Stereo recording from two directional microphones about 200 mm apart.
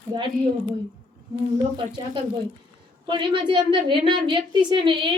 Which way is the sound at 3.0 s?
25° right (ahead or behind).